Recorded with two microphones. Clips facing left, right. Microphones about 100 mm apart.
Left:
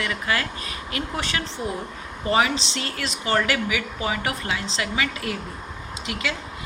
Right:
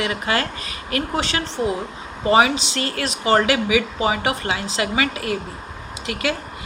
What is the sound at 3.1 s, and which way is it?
A woman's voice, 90° right.